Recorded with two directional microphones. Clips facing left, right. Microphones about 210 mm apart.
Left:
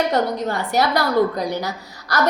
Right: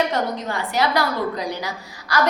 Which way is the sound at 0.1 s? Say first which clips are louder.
Left 4 dB; 40° left (ahead or behind).